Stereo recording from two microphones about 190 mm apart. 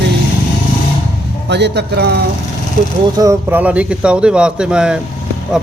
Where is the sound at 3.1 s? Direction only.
15° right (ahead or behind).